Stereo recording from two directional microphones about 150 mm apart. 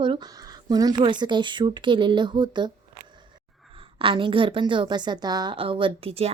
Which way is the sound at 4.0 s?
35° right (ahead or behind).